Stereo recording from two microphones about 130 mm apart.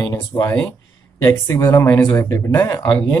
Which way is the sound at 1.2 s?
25° left (ahead or behind).